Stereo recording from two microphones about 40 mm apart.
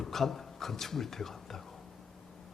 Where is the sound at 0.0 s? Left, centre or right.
Centre.